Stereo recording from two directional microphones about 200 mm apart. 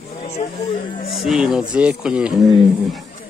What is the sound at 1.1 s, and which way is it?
A man's voice, centre (ahead or behind).